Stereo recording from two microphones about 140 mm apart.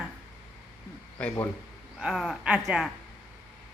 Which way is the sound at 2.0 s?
5° right (ahead or behind).